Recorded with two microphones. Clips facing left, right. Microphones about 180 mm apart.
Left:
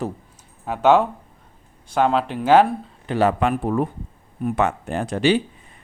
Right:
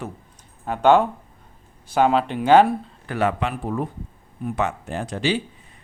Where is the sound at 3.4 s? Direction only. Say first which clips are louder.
Left 5 dB; 55° left (ahead or behind).